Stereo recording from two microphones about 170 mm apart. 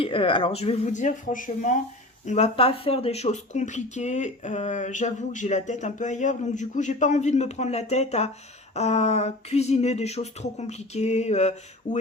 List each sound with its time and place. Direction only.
0.0 s speech: 30° left (ahead or behind)